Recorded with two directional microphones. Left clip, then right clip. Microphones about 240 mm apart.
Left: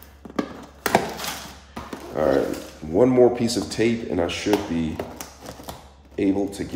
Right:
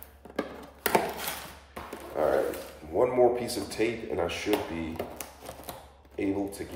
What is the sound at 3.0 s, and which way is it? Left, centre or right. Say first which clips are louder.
A man's voice: left 7 dB; left.